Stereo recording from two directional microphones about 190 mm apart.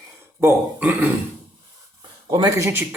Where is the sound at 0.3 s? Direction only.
10° right (ahead or behind).